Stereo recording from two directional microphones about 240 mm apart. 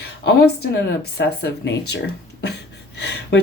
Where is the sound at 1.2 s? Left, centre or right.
Left.